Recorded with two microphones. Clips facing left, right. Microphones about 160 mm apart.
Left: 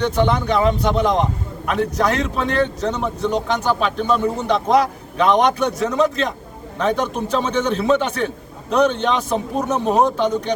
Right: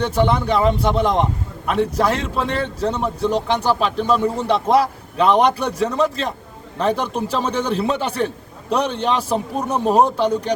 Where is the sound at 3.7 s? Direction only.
Centre (ahead or behind).